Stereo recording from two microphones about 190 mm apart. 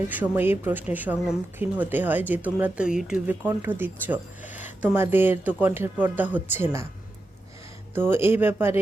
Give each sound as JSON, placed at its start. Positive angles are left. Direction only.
{"t": 0.1, "sound": "speech", "side_deg": -10}
{"t": 7.9, "sound": "speech", "side_deg": -10}